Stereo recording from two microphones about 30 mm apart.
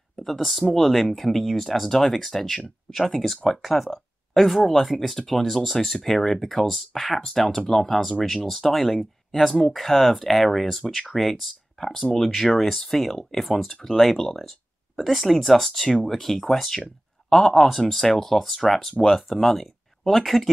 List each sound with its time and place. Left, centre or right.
0.7 s speech: centre
9.3 s speech: centre
9.6 s speech: centre
10.8 s speech: centre
12.2 s speech: centre